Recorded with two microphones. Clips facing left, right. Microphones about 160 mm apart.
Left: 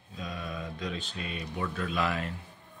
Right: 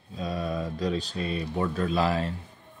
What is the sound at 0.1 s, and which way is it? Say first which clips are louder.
Speech: right 8 dB; 35° right (ahead or behind).